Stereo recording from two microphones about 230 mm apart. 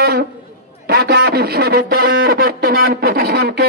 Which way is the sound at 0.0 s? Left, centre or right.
Right.